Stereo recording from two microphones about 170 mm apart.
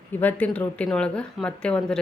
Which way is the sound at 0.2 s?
10° left (ahead or behind).